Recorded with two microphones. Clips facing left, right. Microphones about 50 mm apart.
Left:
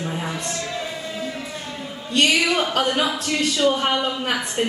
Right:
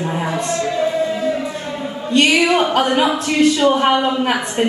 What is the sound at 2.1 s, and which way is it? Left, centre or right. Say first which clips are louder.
A woman's voice: right 5 dB; right.